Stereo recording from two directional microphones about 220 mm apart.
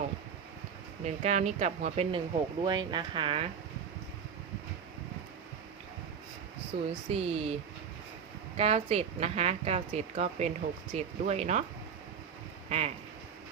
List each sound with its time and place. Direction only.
1.0 s a woman's voice: 30° right (ahead or behind)
6.7 s a woman's voice: 25° right (ahead or behind)
12.6 s speech: 30° right (ahead or behind)